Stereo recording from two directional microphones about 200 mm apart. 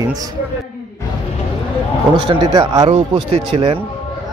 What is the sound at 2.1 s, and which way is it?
A man's voice, 25° right (ahead or behind).